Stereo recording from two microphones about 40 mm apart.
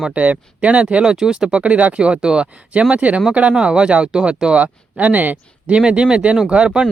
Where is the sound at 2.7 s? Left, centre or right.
Right.